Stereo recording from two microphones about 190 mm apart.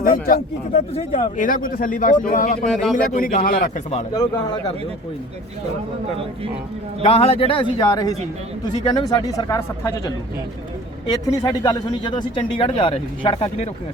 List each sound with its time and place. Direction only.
0.0 s a man's voice: 50° left (ahead or behind)
0.9 s speech: 30° left (ahead or behind)
1.4 s a man's voice: 45° left (ahead or behind)
2.6 s a man's voice: centre (ahead or behind)
3.1 s a man's voice: 45° left (ahead or behind)
4.1 s speech: 20° left (ahead or behind)
7.0 s speech: 35° left (ahead or behind); by 10.1 s 15° left (ahead or behind)
11.4 s speech: 20° left (ahead or behind)